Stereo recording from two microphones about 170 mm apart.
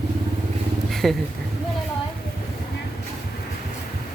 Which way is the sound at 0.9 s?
Centre (ahead or behind).